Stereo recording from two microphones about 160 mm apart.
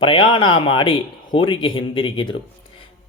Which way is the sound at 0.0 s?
35° left (ahead or behind).